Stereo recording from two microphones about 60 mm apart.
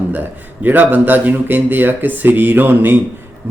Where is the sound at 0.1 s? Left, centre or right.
Right.